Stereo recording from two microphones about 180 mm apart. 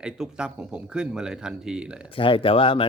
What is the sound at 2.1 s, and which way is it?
Speech, 30° left (ahead or behind).